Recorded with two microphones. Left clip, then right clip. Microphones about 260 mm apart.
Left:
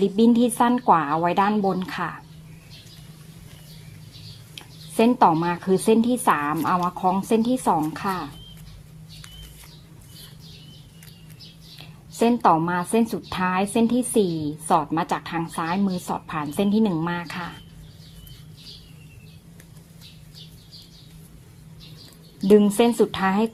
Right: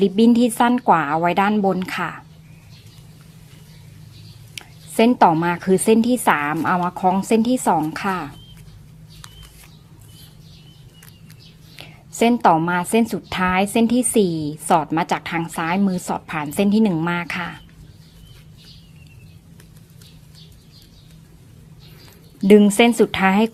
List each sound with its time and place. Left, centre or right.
0.0 s speech: centre
4.5 s a woman's voice: centre
11.8 s a woman's voice: centre
22.4 s a woman's voice: right